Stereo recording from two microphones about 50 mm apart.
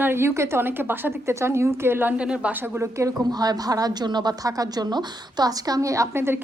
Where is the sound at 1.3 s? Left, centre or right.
Right.